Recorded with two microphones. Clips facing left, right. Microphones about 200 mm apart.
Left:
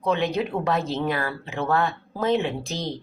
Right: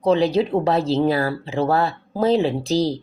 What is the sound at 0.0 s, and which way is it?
Speech, 35° right (ahead or behind).